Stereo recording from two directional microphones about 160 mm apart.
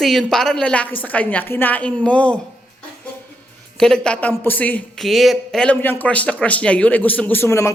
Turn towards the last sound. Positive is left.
turn(degrees=15)  # may be behind; listen again after turning